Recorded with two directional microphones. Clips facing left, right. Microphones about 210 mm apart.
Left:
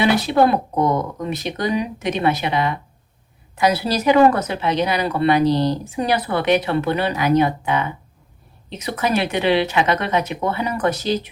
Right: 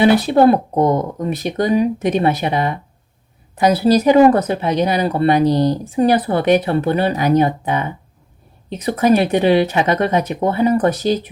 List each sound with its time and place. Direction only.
0.0 s speech: 50° right (ahead or behind)
3.9 s speech: 40° right (ahead or behind)